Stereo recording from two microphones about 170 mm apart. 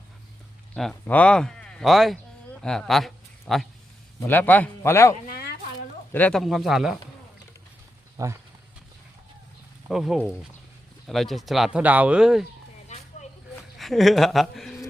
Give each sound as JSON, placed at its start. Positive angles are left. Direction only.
{"t": 0.7, "sound": "speech", "side_deg": 5}
{"t": 5.1, "sound": "a sound", "side_deg": 65}
{"t": 6.1, "sound": "speech", "side_deg": 10}
{"t": 8.2, "sound": "speech", "side_deg": -20}
{"t": 9.9, "sound": "speech", "side_deg": 0}
{"t": 13.7, "sound": "speech", "side_deg": 0}